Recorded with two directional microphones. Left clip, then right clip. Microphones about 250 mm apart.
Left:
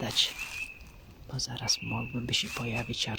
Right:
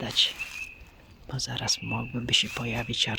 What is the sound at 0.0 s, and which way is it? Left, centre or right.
Speech, centre.